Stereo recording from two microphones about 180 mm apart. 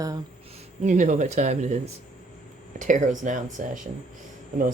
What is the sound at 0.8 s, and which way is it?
Speech, 45° right (ahead or behind).